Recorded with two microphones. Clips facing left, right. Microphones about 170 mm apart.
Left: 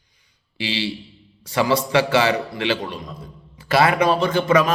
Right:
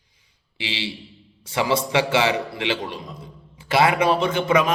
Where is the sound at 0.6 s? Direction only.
20° right (ahead or behind).